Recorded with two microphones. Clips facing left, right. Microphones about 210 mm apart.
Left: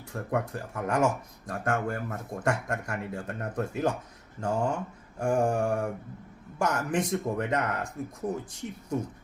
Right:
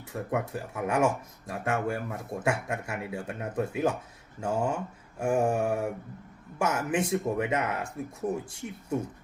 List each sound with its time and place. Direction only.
0.1 s speech: 5° right (ahead or behind)